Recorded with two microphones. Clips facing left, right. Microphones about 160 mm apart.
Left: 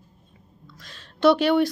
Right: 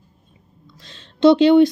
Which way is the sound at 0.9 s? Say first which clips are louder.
Right 5 dB; 20° right (ahead or behind).